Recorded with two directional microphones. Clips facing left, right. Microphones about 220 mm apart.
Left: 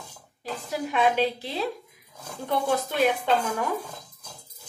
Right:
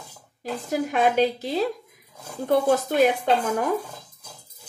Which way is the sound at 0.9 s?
45° right (ahead or behind).